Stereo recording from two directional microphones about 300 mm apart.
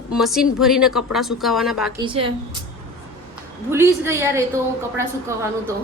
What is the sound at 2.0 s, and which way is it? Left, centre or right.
Speech, centre.